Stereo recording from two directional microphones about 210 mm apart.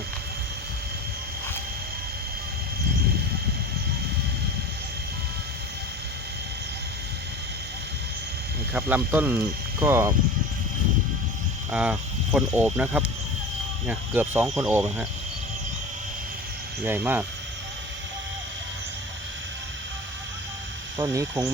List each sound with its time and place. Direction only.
8.7 s speech: 10° right (ahead or behind)
11.7 s speech: 5° right (ahead or behind)
16.8 s speech: 10° right (ahead or behind)
21.0 s speech: 15° right (ahead or behind)